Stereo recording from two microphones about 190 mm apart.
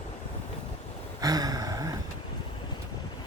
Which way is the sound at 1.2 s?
20° right (ahead or behind).